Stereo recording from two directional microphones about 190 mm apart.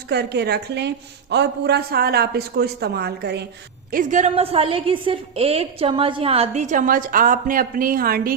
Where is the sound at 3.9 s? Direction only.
40° right (ahead or behind).